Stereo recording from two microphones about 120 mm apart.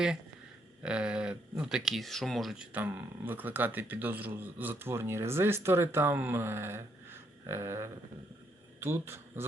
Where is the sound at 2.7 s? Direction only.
15° right (ahead or behind).